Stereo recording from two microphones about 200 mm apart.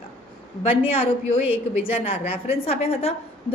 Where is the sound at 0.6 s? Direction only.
30° left (ahead or behind).